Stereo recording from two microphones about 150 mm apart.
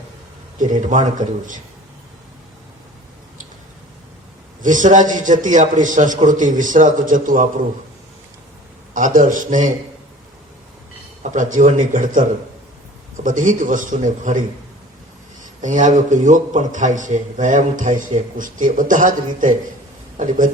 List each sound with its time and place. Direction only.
0.6 s a man's voice: 60° right (ahead or behind)
4.6 s a man's voice: 60° right (ahead or behind)
8.9 s a man's voice: 60° right (ahead or behind)
11.2 s a man's voice: 60° right (ahead or behind)
15.6 s a man's voice: 55° right (ahead or behind)